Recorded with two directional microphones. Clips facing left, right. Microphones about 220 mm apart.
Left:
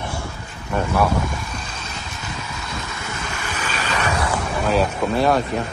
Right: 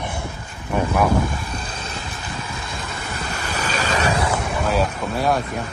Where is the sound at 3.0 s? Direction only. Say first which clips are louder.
Right 3 dB; 35° right (ahead or behind).